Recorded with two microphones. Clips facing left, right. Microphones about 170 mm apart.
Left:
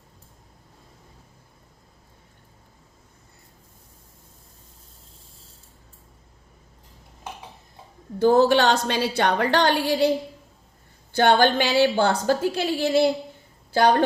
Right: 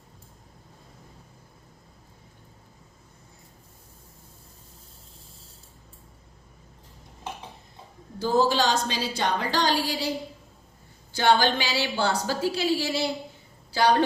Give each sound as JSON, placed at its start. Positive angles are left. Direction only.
{"t": 8.2, "sound": "a woman's voice", "side_deg": 60}
{"t": 11.1, "sound": "a woman's voice", "side_deg": 55}